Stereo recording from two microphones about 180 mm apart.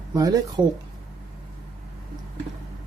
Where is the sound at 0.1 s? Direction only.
20° right (ahead or behind).